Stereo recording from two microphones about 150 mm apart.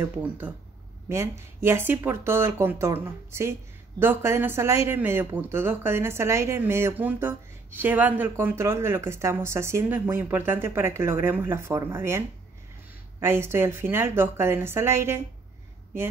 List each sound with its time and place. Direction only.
0.0 s speech: 10° right (ahead or behind)